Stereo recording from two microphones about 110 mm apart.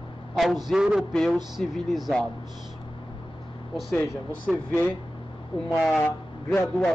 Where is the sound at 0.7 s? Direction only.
5° right (ahead or behind).